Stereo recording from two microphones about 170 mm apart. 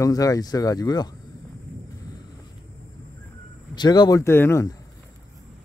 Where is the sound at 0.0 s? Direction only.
20° left (ahead or behind).